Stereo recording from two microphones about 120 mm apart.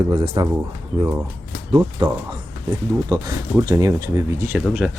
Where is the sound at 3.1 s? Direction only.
30° right (ahead or behind).